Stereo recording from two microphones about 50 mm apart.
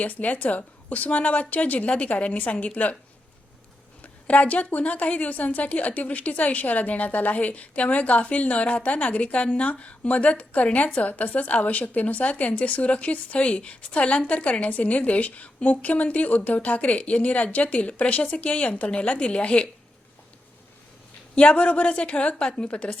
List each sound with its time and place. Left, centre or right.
0.0 s a woman's voice: left
4.0 s a woman's voice: left
21.3 s a woman's voice: left